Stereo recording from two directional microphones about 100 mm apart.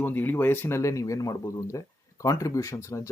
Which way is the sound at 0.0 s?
20° left (ahead or behind).